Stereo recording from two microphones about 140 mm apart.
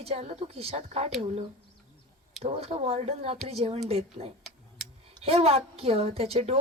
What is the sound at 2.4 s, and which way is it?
A woman's voice, 45° right (ahead or behind).